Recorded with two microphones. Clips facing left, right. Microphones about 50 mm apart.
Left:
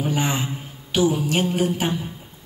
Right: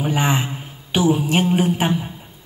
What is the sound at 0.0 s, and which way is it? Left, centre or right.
Mantra, right.